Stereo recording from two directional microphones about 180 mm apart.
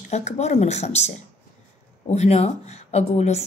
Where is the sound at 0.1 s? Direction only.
40° left (ahead or behind).